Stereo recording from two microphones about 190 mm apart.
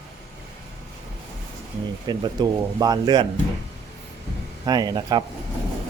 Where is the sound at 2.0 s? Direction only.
20° right (ahead or behind).